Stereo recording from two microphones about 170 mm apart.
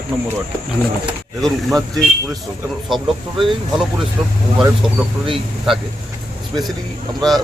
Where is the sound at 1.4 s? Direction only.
Centre (ahead or behind).